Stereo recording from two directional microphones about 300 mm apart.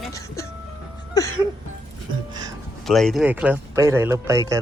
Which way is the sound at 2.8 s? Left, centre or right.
Centre.